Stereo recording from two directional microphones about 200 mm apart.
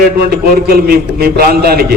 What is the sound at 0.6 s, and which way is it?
A man's voice, 50° right (ahead or behind).